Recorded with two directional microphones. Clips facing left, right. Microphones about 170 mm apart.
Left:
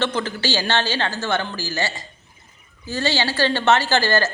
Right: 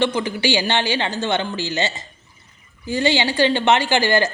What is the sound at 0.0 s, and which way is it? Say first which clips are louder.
A woman's voice: right 3 dB; 10° right (ahead or behind).